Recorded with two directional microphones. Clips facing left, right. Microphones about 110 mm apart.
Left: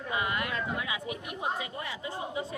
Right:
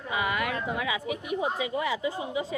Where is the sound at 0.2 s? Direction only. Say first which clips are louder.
Right 5 dB; 90° right.